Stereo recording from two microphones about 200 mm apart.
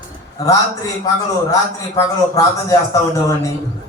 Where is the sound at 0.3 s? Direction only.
15° left (ahead or behind).